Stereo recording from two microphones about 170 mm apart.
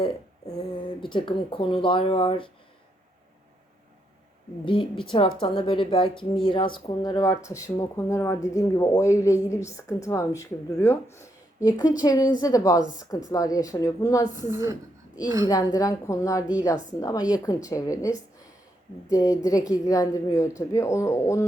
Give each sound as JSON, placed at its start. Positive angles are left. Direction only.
{"t": 1.0, "sound": "speech", "side_deg": 30}
{"t": 4.6, "sound": "speech", "side_deg": 30}
{"t": 14.5, "sound": "speech", "side_deg": -15}
{"t": 15.4, "sound": "speech", "side_deg": 20}
{"t": 19.1, "sound": "speech", "side_deg": 20}